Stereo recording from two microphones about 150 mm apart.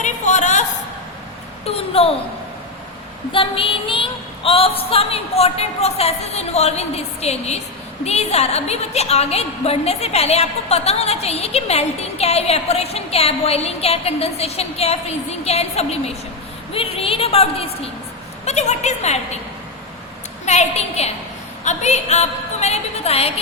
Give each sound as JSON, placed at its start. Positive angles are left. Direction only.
{"t": 0.0, "sound": "a sound", "side_deg": 55}
{"t": 1.6, "sound": "a woman's voice", "side_deg": 40}
{"t": 3.3, "sound": "a woman's voice", "side_deg": 35}
{"t": 20.4, "sound": "a woman's voice", "side_deg": 50}